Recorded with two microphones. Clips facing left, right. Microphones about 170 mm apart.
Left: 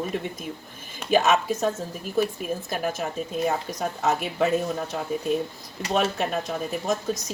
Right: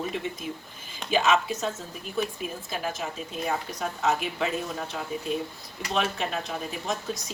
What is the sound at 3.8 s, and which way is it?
Speech, 45° left (ahead or behind).